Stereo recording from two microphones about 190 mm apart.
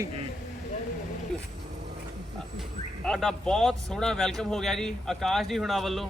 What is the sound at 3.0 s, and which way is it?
A man's voice, centre (ahead or behind).